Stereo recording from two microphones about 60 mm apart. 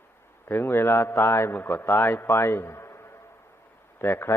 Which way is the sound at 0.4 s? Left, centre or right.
Left.